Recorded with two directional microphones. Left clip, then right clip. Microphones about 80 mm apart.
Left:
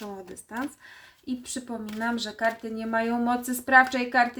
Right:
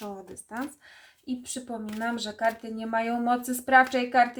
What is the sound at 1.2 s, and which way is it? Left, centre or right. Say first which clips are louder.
Speech: left 1 dB; right.